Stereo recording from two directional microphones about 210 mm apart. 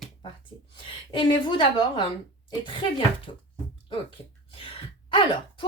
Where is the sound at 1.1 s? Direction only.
20° left (ahead or behind).